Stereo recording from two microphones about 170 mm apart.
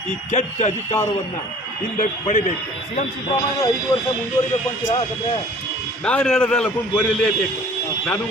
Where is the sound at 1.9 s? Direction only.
50° left (ahead or behind).